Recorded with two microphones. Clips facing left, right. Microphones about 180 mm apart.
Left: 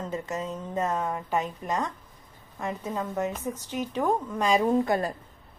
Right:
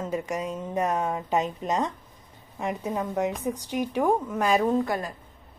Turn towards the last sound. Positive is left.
turn(degrees=25)  # may be behind; listen again after turning